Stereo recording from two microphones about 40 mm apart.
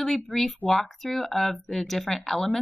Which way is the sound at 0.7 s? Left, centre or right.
Centre.